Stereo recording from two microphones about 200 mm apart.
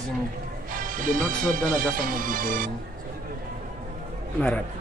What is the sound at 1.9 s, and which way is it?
Music, 45° right (ahead or behind).